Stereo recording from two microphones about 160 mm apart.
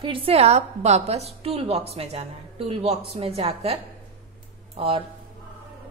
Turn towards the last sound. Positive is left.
turn(degrees=-35)  # may be behind; listen again after turning